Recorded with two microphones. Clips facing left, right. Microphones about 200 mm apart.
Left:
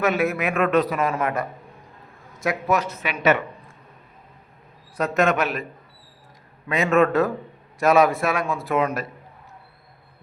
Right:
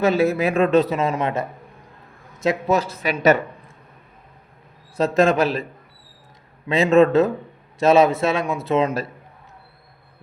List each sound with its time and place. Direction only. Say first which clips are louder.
0.0 s a man's voice: right 4 dB; 30° right (ahead or behind)
4.9 s a man's voice: right 4 dB; 30° right (ahead or behind)
6.7 s a man's voice: right 4 dB; 25° right (ahead or behind)